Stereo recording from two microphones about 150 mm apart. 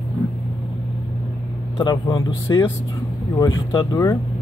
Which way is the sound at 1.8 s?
25° left (ahead or behind).